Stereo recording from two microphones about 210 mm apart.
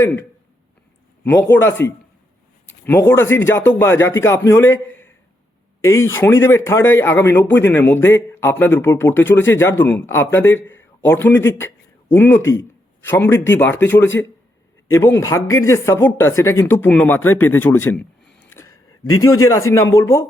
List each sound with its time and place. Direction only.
0.0 s a man's voice: 10° left (ahead or behind)
5.8 s a man's voice: 10° left (ahead or behind)
18.3 s a sound: 10° left (ahead or behind)
19.2 s a man's voice: 15° left (ahead or behind)